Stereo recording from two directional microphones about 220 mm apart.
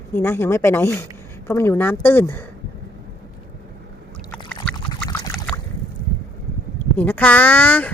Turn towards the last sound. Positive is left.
turn(degrees=5)  # may be behind; listen again after turning